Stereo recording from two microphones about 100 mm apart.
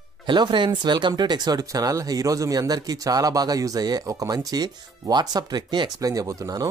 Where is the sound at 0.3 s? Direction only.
50° right (ahead or behind).